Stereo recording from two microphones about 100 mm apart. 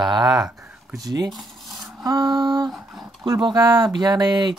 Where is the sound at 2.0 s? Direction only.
40° right (ahead or behind).